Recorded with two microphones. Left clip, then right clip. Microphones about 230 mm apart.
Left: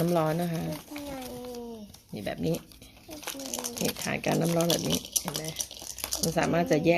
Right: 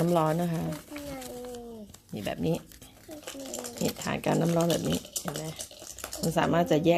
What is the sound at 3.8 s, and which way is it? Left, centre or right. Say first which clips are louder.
Speech: even; centre.